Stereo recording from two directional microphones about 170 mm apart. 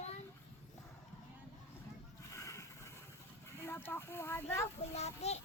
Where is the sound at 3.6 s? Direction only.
15° left (ahead or behind).